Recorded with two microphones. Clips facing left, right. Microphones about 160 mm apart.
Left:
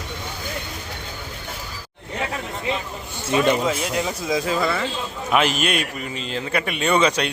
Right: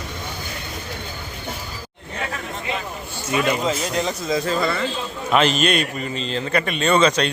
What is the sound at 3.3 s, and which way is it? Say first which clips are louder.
Speech: left 2 dB; 30° left (ahead or behind).